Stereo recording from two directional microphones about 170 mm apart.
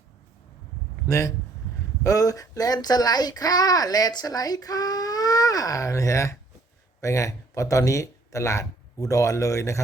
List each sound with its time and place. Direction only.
1.0 s speech: 20° left (ahead or behind)